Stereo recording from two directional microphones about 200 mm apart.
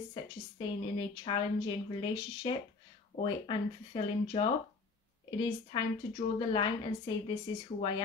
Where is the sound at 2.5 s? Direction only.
25° left (ahead or behind).